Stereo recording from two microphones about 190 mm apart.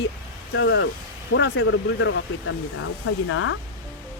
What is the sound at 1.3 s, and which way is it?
Speech, 90° left.